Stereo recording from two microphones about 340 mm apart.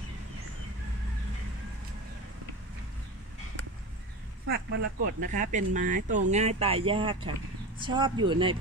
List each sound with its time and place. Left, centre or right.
4.5 s speech: right